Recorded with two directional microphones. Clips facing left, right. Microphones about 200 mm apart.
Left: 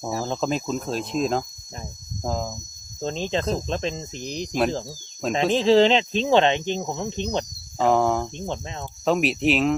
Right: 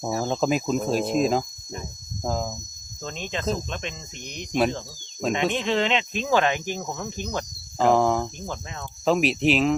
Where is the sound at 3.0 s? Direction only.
30° left (ahead or behind).